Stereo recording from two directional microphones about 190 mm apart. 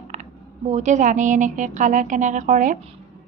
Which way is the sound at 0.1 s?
40° right (ahead or behind).